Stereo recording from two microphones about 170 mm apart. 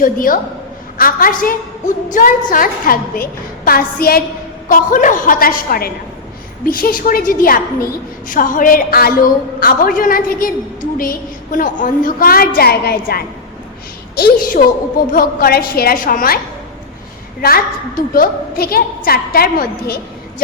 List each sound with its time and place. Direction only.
0.0 s a woman's voice: 55° left (ahead or behind)
17.4 s a woman's voice: 60° left (ahead or behind)